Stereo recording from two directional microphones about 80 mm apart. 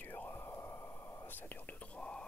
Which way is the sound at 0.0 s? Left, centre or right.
Left.